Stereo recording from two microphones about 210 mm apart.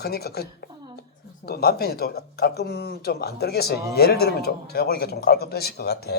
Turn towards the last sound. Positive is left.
turn(degrees=50)  # may be behind; listen again after turning